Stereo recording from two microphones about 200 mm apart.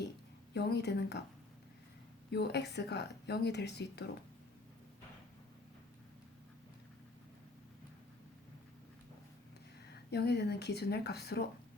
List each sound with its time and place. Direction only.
0.5 s speech: 55° left (ahead or behind)
2.3 s speech: 55° left (ahead or behind)
9.9 s speech: 55° left (ahead or behind)